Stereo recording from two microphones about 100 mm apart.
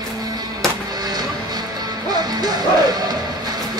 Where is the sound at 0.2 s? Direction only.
40° right (ahead or behind).